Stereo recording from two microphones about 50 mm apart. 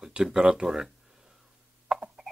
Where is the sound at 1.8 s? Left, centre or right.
Centre.